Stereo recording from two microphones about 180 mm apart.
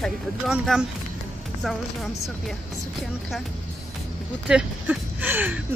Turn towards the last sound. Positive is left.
turn(degrees=-10)  # may be behind; listen again after turning